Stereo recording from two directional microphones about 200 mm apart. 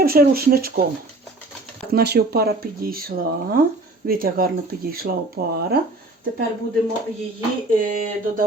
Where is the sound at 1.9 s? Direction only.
50° right (ahead or behind).